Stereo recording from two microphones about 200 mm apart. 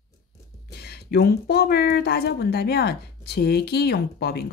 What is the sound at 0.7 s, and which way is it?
A woman's voice, 55° left (ahead or behind).